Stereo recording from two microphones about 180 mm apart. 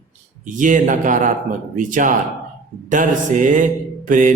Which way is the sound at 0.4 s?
45° right (ahead or behind).